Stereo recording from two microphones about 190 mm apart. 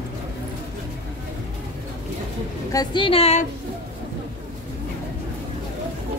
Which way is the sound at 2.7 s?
25° left (ahead or behind).